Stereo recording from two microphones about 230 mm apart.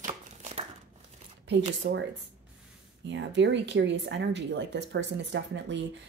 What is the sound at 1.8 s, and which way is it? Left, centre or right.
Speech, right.